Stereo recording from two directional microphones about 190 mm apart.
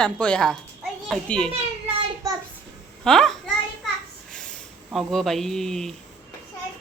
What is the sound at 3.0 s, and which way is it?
Speech, 5° left (ahead or behind).